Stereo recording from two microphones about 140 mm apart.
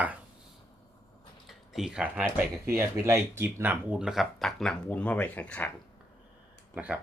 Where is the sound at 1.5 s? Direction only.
5° right (ahead or behind).